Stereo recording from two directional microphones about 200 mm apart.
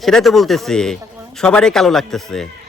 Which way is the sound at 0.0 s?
Centre (ahead or behind).